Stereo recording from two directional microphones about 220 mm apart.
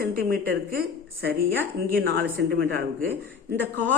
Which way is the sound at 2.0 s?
60° right (ahead or behind).